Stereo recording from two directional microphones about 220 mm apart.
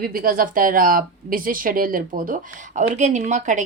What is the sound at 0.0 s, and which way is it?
Speech, 40° right (ahead or behind).